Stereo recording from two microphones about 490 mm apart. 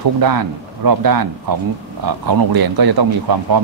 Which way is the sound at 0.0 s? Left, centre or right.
Right.